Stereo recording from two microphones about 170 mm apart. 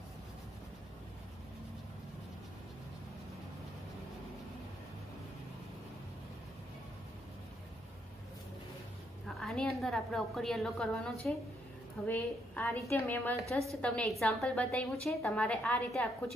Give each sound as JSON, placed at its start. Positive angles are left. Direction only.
{"t": 9.4, "sound": "a woman's voice", "side_deg": 0}